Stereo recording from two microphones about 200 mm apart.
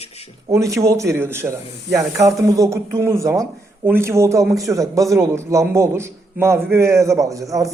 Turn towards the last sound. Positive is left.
turn(degrees=-15)  # may be behind; listen again after turning